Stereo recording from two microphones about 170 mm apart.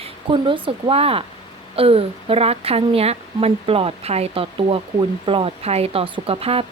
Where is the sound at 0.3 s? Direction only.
30° right (ahead or behind).